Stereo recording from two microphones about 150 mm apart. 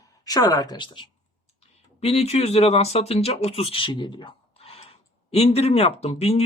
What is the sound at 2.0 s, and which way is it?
Speech, 45° left (ahead or behind).